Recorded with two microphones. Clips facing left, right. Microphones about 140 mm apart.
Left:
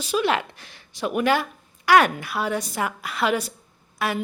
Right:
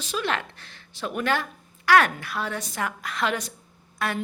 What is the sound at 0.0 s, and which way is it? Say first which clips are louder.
Speech: left 6 dB; 10° left (ahead or behind).